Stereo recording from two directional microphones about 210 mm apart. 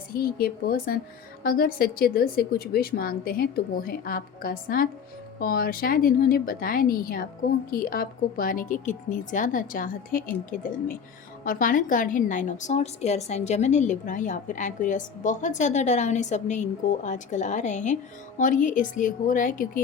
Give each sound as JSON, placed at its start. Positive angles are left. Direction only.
{"t": 0.2, "sound": "a woman's voice", "side_deg": 45}